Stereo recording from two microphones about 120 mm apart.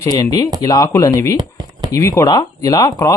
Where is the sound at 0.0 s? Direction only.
30° left (ahead or behind).